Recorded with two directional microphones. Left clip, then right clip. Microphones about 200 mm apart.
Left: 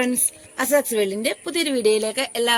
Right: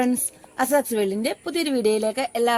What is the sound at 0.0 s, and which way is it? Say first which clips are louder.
Speech: even; 50° right (ahead or behind).